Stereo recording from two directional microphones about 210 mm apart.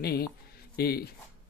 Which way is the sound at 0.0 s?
50° left (ahead or behind).